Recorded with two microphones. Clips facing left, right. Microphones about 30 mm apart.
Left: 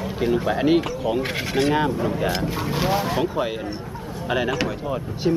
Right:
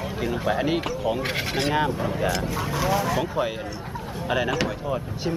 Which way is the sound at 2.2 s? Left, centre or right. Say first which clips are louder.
Left 2 dB; left.